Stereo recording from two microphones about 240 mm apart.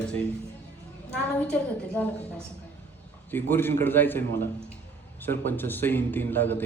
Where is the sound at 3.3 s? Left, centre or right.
Centre.